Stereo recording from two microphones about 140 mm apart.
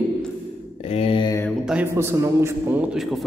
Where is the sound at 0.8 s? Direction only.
45° left (ahead or behind).